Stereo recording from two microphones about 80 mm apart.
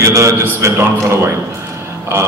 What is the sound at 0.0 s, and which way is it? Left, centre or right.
Speech, right.